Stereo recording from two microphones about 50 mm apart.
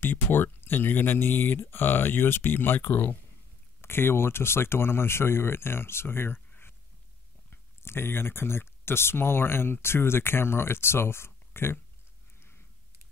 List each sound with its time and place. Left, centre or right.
0.0 s speech: left
3.8 s speech: left
7.8 s speech: left
12.4 s a sound: left